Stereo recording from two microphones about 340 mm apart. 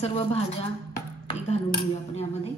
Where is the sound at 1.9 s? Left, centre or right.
Centre.